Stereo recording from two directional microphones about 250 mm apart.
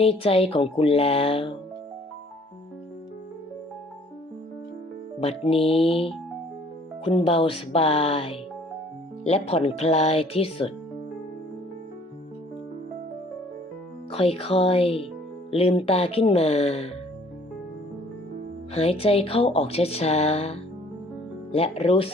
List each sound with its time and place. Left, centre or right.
0.0 s speech: left
5.2 s speech: left
14.1 s speech: left
18.7 s speech: left